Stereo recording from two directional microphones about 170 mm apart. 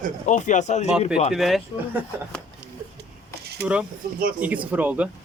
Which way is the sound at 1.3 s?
Centre (ahead or behind).